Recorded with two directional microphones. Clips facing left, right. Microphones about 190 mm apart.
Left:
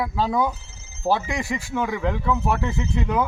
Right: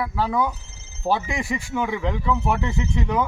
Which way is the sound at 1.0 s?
Centre (ahead or behind).